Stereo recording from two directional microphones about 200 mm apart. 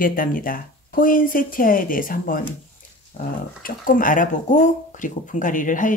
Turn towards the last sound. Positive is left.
turn(degrees=40)  # may be behind; listen again after turning